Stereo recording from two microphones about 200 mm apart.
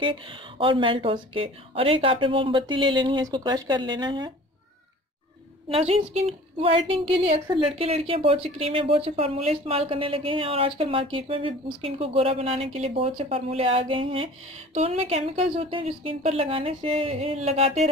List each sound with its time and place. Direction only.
0.0 s a woman's voice: 25° right (ahead or behind)
5.7 s a woman's voice: 30° right (ahead or behind)